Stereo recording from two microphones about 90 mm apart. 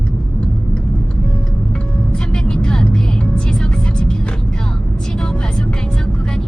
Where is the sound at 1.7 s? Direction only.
10° left (ahead or behind).